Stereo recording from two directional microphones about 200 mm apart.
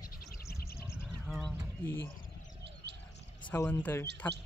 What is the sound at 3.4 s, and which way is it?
Speech, 10° left (ahead or behind).